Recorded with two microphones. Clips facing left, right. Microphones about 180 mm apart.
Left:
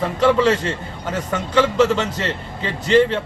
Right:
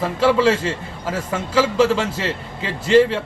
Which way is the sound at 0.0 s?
5° right (ahead or behind).